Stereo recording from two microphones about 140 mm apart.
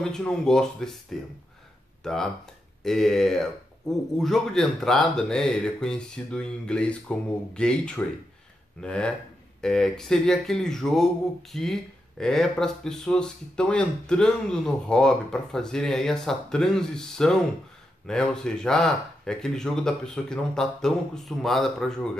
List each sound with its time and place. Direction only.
0.0 s speech: 5° left (ahead or behind)
2.0 s speech: 5° left (ahead or behind)